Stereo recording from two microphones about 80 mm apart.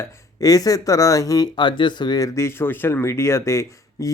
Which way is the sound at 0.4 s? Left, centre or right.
Left.